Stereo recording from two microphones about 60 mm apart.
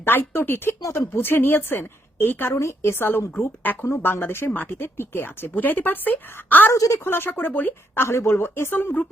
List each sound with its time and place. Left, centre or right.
0.0 s a woman's voice: left
3.8 s a woman's voice: left
8.0 s speech: left